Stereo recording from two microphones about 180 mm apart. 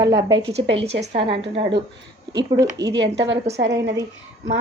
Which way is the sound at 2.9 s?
75° right (ahead or behind).